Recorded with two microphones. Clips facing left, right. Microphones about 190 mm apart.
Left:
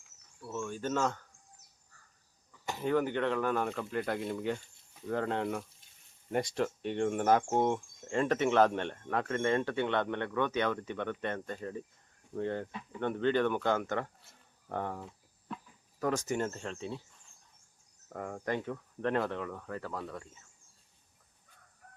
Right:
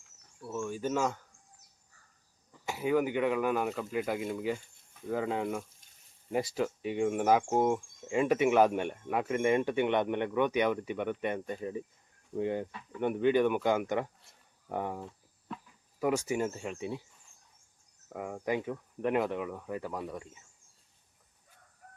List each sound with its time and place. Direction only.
0.4 s speech: 5° right (ahead or behind)
2.6 s speech: 10° right (ahead or behind)
18.1 s speech: 5° right (ahead or behind)